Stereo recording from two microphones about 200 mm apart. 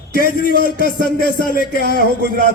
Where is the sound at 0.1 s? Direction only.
45° left (ahead or behind).